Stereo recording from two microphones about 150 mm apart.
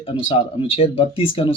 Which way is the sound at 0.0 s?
35° left (ahead or behind).